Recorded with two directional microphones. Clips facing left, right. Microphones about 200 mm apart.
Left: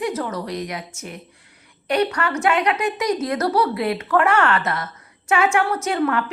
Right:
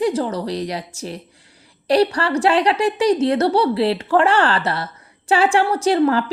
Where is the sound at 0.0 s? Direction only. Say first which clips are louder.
Right 5 dB; 30° right (ahead or behind).